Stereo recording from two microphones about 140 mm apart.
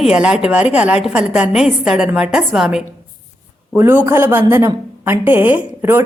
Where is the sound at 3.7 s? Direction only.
15° right (ahead or behind).